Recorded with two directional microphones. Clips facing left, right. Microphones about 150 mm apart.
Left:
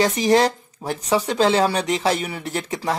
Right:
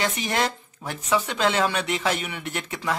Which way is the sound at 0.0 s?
35° left (ahead or behind).